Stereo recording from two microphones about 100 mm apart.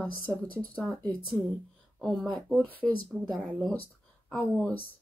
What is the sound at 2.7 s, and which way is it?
Speech, 15° left (ahead or behind).